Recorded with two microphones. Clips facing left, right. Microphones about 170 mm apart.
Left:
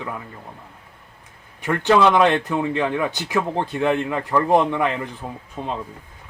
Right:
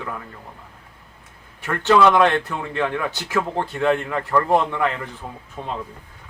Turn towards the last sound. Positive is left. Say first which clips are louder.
# left 2 dB
turn(degrees=-15)  # may be behind; listen again after turning